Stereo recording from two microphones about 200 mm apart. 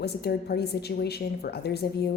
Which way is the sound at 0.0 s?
55° left (ahead or behind).